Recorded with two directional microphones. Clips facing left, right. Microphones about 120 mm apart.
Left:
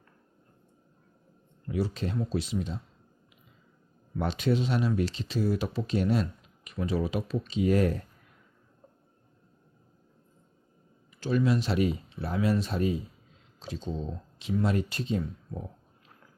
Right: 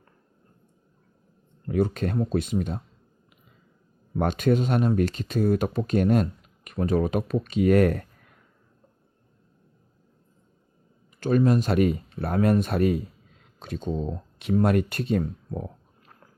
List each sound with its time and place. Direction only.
1.6 s speech: 55° right (ahead or behind)
4.2 s speech: 50° right (ahead or behind)
11.2 s speech: 50° right (ahead or behind)